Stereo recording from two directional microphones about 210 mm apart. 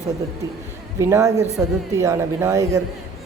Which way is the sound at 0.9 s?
15° right (ahead or behind).